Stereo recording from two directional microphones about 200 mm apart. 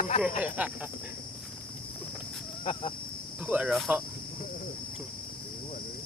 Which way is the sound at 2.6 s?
25° left (ahead or behind).